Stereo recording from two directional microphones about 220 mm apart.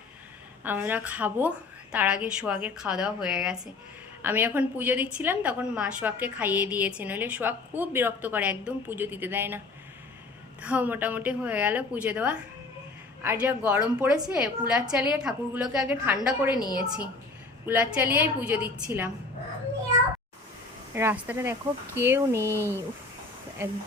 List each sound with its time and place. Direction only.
0.6 s a woman's voice: 10° right (ahead or behind)
10.6 s a woman's voice: 5° right (ahead or behind)
16.5 s a woman's voice: 20° left (ahead or behind)
17.7 s a woman's voice: 5° right (ahead or behind)
20.9 s a woman's voice: 10° right (ahead or behind)
23.6 s a woman's voice: 10° right (ahead or behind)